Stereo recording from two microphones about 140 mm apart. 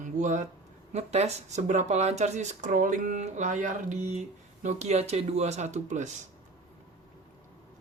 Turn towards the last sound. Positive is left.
turn(degrees=-55)  # may be behind; listen again after turning